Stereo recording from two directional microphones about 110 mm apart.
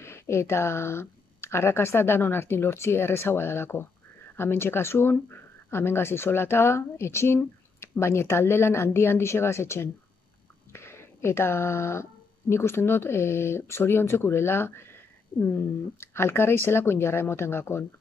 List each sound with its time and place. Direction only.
0.0 s speech: 25° left (ahead or behind)